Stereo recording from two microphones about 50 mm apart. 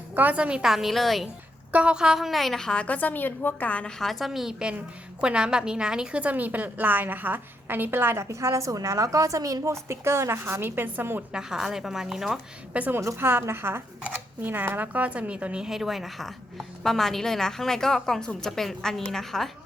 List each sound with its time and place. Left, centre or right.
0.3 s a woman's voice: right
0.6 s a woman's voice: centre
1.7 s a woman's voice: right
2.1 s a woman's voice: centre
2.7 s a woman's voice: left
3.8 s a woman's voice: centre
5.2 s a woman's voice: centre; by 8.2 s right
8.2 s a woman's voice: right
11.3 s a woman's voice: centre
12.7 s a woman's voice: right
13.1 s a woman's voice: right
14.6 s a woman's voice: right
15.6 s a woman's voice: centre